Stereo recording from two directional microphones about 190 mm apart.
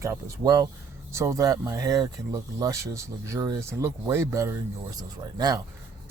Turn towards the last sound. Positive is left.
turn(degrees=-20)  # may be behind; listen again after turning